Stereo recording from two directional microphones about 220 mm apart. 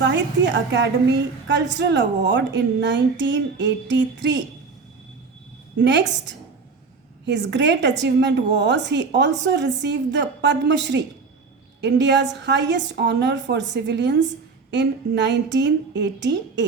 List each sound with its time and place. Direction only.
0.0 s a woman's voice: 50° right (ahead or behind)
5.8 s a woman's voice: 55° right (ahead or behind)